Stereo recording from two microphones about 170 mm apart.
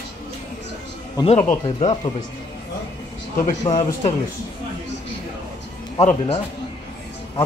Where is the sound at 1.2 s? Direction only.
35° left (ahead or behind).